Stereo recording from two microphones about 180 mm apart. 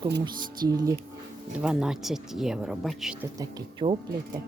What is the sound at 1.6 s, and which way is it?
Speech, 5° right (ahead or behind).